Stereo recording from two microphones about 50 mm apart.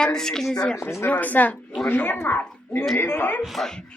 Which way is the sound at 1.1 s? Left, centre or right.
Left.